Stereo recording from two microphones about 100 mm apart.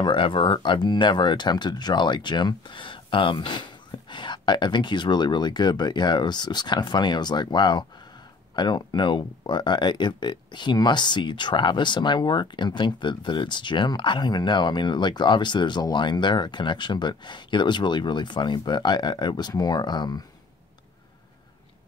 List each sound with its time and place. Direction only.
0.0 s speech: 55° left (ahead or behind)